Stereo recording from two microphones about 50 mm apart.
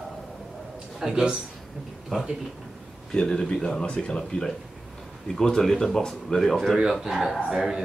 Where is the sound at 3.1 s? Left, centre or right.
Centre.